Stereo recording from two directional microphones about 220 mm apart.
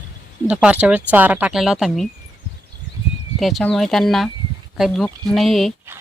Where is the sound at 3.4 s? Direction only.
Centre (ahead or behind).